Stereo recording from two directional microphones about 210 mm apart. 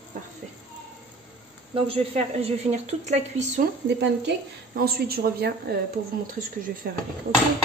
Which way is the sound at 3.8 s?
55° right (ahead or behind).